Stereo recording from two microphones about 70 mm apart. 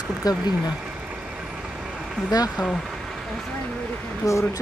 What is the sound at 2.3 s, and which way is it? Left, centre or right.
Speech, left.